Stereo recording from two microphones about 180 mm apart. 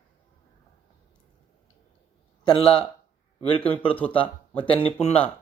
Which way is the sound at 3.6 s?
10° left (ahead or behind).